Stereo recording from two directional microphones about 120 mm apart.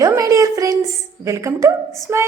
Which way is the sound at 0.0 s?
30° right (ahead or behind).